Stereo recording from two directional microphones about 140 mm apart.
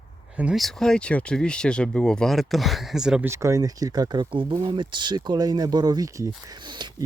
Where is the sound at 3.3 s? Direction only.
20° right (ahead or behind).